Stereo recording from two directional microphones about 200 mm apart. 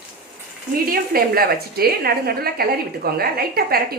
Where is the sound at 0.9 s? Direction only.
50° right (ahead or behind).